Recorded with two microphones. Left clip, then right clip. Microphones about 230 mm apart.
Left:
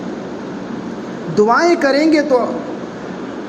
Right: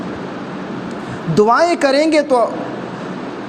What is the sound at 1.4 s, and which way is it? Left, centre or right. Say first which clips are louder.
A man's voice: even; right.